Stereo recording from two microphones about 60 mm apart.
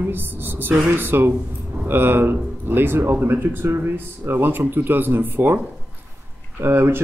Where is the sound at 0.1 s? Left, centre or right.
Right.